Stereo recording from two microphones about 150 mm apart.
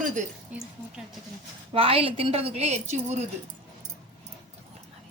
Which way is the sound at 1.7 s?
40° right (ahead or behind).